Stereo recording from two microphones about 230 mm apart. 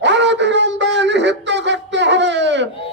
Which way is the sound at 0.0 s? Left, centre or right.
Right.